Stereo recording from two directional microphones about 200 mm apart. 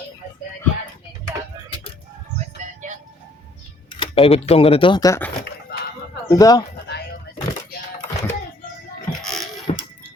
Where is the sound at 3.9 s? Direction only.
25° left (ahead or behind).